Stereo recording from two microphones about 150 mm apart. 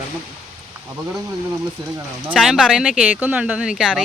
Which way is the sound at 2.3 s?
5° right (ahead or behind).